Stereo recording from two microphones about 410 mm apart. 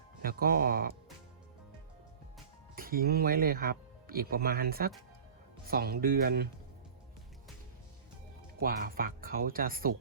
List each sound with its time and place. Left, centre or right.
0.2 s speech: right
2.7 s speech: right
8.6 s speech: right